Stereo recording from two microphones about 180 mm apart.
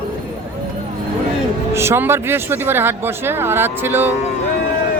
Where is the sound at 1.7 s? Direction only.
15° right (ahead or behind).